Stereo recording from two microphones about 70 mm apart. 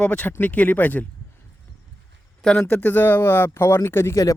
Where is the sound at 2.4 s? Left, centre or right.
Centre.